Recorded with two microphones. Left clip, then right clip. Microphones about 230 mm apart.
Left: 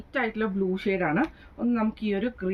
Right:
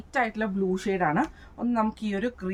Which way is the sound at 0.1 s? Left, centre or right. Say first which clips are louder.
Right 1 dB; right.